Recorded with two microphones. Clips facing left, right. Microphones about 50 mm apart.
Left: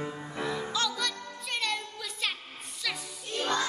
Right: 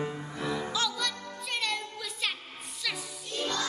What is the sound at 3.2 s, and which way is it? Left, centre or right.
Music, left.